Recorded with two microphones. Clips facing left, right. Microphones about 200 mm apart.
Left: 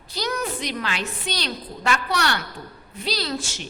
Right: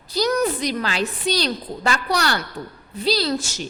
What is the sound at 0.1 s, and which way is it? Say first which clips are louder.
A woman's voice: right 7 dB; 40° right (ahead or behind).